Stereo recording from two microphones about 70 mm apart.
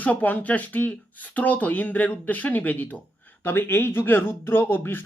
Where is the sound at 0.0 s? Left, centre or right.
Left.